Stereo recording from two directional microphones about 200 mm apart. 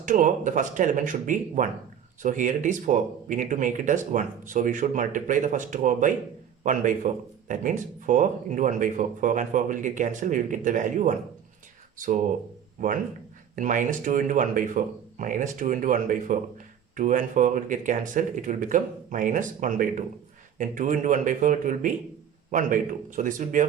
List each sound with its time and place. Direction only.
0.0 s speech: 40° right (ahead or behind)